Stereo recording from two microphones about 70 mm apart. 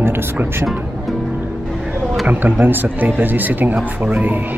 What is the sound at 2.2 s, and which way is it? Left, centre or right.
Speech, right.